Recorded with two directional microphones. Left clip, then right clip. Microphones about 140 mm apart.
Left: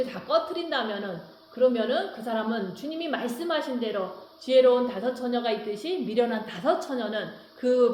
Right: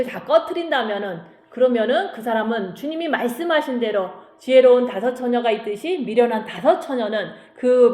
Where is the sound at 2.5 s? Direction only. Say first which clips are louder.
Right 7 dB; 30° right (ahead or behind).